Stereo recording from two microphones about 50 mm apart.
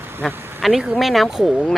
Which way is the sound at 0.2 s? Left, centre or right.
Centre.